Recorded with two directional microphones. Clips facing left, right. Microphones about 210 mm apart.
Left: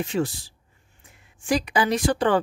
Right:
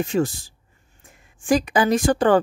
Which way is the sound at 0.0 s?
45° right (ahead or behind).